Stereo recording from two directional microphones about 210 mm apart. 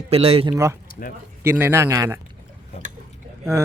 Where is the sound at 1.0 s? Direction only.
40° left (ahead or behind).